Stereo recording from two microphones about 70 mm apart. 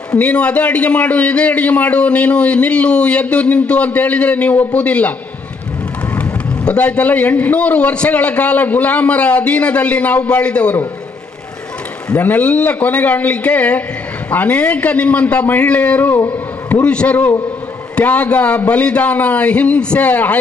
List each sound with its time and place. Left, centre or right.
0.2 s a man's voice: centre
6.1 s a man's voice: centre
12.1 s a man's voice: left
16.3 s a sound: left
16.8 s a man's voice: centre